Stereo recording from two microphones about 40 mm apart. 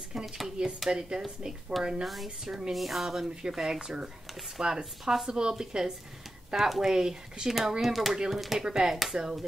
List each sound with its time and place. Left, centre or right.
0.1 s speech: centre
2.7 s speech: centre
3.3 s speech: centre